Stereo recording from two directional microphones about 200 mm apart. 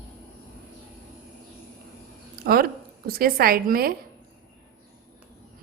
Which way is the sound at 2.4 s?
50° right (ahead or behind).